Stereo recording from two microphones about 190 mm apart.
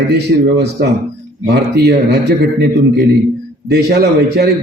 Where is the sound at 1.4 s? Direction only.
60° right (ahead or behind).